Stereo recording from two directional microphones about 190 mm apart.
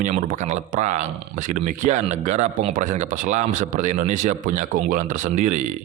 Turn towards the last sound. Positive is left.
turn(degrees=-40)  # may be behind; listen again after turning